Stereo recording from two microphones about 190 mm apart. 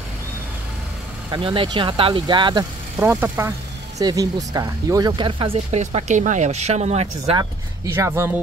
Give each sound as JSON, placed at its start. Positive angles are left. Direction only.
{"t": 1.3, "sound": "speech", "side_deg": -25}
{"t": 3.0, "sound": "speech", "side_deg": -10}
{"t": 7.3, "sound": "speech", "side_deg": -15}